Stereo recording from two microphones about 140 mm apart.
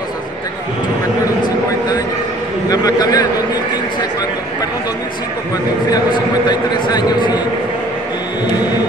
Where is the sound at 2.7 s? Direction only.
25° left (ahead or behind).